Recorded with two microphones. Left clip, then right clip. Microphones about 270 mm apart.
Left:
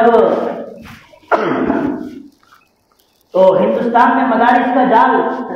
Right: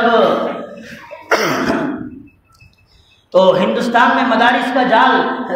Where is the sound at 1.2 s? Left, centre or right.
Right.